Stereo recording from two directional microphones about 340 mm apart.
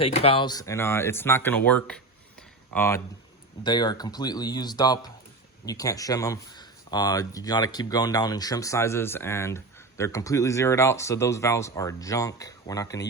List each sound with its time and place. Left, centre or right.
0.0 s speech: centre